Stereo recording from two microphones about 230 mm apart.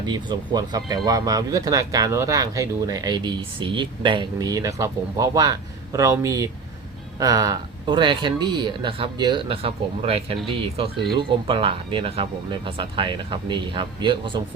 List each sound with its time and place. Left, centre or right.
0.0 s speech: centre